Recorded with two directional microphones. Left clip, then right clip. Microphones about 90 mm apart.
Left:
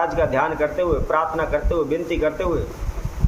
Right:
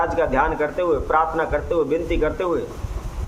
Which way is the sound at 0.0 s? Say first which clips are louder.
Even; 25° right (ahead or behind).